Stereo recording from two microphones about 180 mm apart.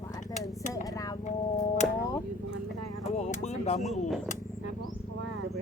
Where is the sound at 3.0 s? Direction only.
40° left (ahead or behind).